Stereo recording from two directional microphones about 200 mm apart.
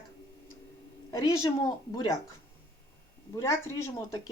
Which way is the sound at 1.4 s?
20° left (ahead or behind).